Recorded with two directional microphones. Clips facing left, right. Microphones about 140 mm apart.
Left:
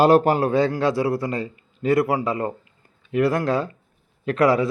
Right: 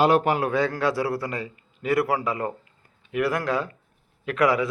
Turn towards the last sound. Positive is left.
turn(degrees=30)  # may be behind; listen again after turning